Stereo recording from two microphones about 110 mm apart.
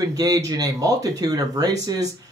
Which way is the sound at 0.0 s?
35° right (ahead or behind).